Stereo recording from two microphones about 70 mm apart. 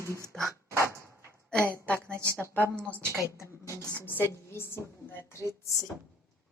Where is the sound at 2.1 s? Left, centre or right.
Right.